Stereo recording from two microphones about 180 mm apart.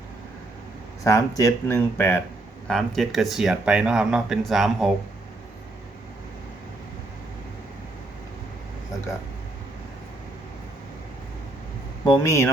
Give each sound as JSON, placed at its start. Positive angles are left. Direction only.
{"t": 1.0, "sound": "speech", "side_deg": 15}
{"t": 2.6, "sound": "speech", "side_deg": 0}
{"t": 12.0, "sound": "speech", "side_deg": 20}